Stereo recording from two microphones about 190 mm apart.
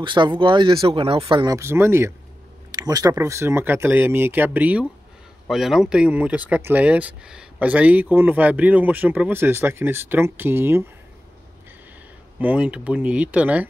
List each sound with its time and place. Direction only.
0.0 s speech: 25° right (ahead or behind)
12.4 s speech: 10° right (ahead or behind)